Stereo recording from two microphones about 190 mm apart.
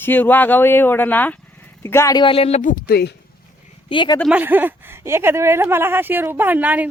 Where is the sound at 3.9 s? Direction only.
25° left (ahead or behind).